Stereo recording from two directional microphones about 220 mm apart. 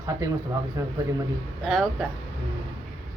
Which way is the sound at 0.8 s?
15° right (ahead or behind).